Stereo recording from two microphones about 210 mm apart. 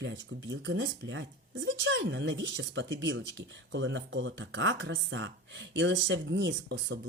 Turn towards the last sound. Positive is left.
turn(degrees=-55)  # may be behind; listen again after turning